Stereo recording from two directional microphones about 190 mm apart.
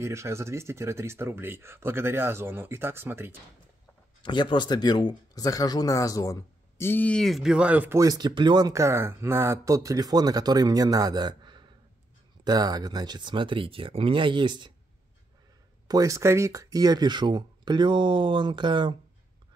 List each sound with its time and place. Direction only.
0.0 s speech: 15° right (ahead or behind)
4.2 s speech: 25° left (ahead or behind); by 14.7 s 25° right (ahead or behind)
15.9 s speech: 15° right (ahead or behind)